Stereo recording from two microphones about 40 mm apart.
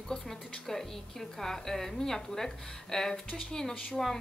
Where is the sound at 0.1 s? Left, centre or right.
Centre.